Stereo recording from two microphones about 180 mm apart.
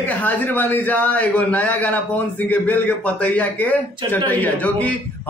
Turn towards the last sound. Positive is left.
turn(degrees=10)  # may be behind; listen again after turning